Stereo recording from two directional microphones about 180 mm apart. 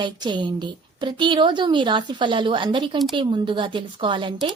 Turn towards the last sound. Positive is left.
turn(degrees=-25)  # may be behind; listen again after turning